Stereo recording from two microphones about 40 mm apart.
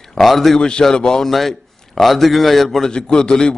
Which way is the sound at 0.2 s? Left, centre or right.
Centre.